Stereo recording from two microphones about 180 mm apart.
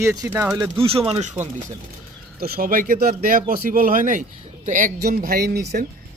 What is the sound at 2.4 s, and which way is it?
Speech, 50° right (ahead or behind).